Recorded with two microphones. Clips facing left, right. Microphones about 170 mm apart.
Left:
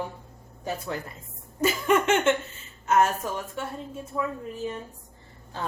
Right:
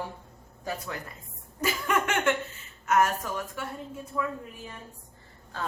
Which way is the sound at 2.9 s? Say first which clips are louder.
Left 2 dB; 25° left (ahead or behind).